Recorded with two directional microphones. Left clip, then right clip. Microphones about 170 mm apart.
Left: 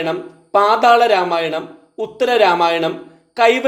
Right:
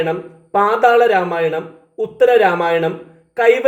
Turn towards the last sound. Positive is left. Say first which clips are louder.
# right 1 dB
turn(degrees=45)  # may be behind; listen again after turning